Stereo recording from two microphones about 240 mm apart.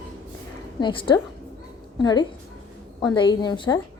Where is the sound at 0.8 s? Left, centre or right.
Left.